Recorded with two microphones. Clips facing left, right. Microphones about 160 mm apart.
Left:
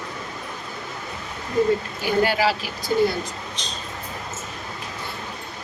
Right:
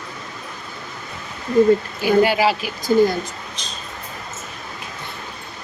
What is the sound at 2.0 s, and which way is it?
Speech, 15° right (ahead or behind).